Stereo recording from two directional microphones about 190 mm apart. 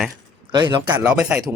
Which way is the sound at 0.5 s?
20° right (ahead or behind).